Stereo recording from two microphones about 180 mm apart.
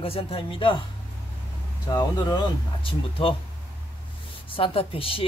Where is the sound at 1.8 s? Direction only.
20° left (ahead or behind).